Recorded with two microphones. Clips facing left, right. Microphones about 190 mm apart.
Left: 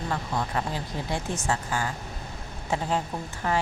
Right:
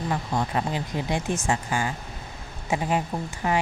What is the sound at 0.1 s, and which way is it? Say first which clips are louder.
Speech: right 2 dB; 20° right (ahead or behind).